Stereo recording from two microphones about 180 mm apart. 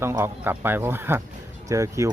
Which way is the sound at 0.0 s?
15° right (ahead or behind).